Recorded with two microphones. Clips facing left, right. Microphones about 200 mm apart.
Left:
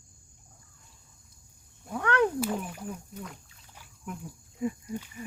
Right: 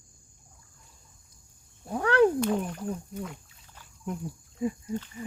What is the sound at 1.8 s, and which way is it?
Cat, 35° right (ahead or behind).